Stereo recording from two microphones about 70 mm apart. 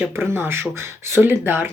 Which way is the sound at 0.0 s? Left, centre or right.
Right.